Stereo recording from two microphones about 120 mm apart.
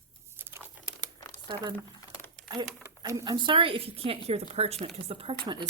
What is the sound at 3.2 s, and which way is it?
Speech, 40° right (ahead or behind).